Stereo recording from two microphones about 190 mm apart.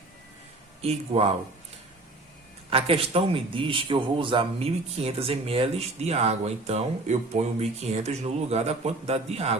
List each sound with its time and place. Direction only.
0.8 s a man's voice: 30° right (ahead or behind)
2.6 s a man's voice: 30° right (ahead or behind)